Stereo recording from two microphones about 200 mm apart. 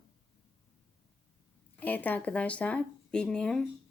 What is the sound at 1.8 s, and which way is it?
Speech, 10° left (ahead or behind).